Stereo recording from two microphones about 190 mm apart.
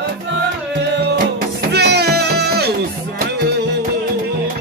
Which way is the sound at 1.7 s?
60° right (ahead or behind).